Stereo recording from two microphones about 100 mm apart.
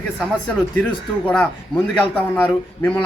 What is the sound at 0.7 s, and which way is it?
A man's voice, 15° left (ahead or behind).